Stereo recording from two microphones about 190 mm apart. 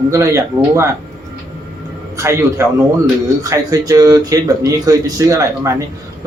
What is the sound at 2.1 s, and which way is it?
A man's voice, 15° right (ahead or behind).